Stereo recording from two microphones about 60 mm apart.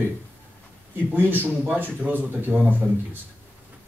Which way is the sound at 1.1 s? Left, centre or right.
Right.